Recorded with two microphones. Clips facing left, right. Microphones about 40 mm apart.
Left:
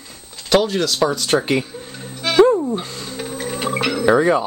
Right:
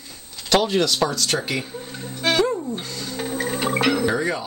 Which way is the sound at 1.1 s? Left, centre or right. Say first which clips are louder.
Left 6 dB; left.